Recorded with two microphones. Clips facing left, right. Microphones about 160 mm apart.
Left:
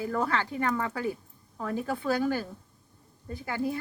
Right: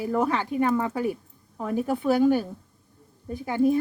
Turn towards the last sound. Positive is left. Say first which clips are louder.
# right 9 dB
turn(degrees=-20)  # may be behind; listen again after turning